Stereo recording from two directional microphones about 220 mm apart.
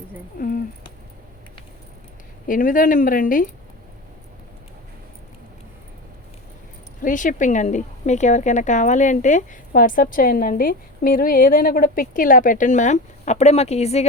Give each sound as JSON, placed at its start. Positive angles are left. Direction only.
{"t": 0.3, "sound": "speech", "side_deg": 40}
{"t": 2.5, "sound": "a woman's voice", "side_deg": 40}
{"t": 7.0, "sound": "a woman's voice", "side_deg": 35}